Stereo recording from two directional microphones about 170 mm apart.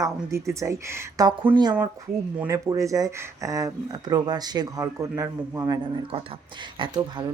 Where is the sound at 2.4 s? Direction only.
20° right (ahead or behind).